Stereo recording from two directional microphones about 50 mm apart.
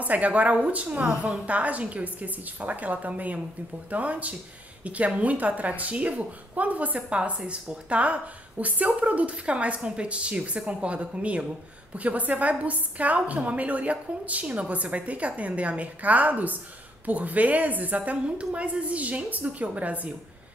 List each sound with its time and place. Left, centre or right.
0.0 s speech: right